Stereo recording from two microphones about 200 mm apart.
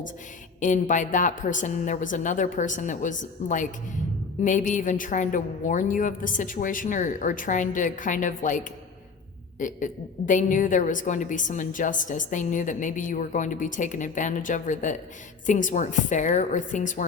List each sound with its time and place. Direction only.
0.6 s a woman's voice: 40° left (ahead or behind)